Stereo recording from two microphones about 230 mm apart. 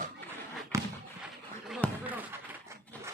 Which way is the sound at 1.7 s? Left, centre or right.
Centre.